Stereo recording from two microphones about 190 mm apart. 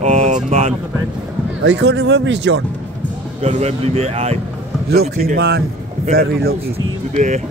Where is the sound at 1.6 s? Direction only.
65° right (ahead or behind).